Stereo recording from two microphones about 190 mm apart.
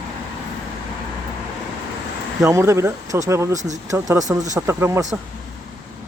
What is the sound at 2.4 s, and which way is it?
Speech, 15° right (ahead or behind).